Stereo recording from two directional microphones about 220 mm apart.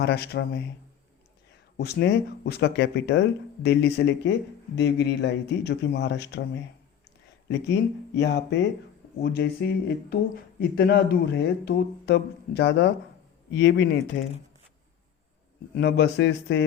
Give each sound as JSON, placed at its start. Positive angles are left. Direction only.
{"t": 0.0, "sound": "speech", "side_deg": 45}
{"t": 1.7, "sound": "speech", "side_deg": 50}
{"t": 7.4, "sound": "speech", "side_deg": 50}
{"t": 15.7, "sound": "speech", "side_deg": 45}